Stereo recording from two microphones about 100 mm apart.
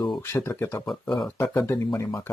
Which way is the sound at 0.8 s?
5° left (ahead or behind).